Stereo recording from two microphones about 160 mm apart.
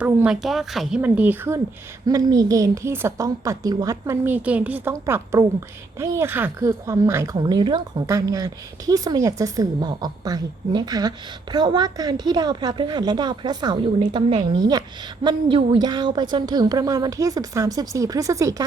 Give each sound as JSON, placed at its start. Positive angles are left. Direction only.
{"t": 0.0, "sound": "a woman's voice", "side_deg": -5}